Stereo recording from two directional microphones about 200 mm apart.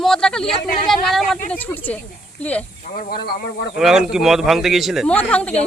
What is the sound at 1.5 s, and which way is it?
A woman's voice, 10° left (ahead or behind).